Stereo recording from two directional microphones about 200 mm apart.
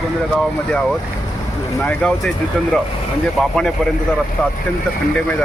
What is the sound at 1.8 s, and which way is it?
Speech, 5° left (ahead or behind).